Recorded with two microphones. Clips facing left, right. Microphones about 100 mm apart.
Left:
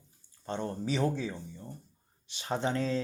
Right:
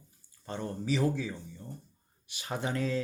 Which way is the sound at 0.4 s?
30° left (ahead or behind).